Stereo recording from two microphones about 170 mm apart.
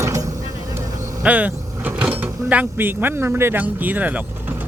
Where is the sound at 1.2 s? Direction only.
10° right (ahead or behind).